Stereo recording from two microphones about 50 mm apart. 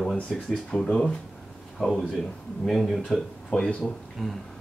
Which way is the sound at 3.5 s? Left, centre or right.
Centre.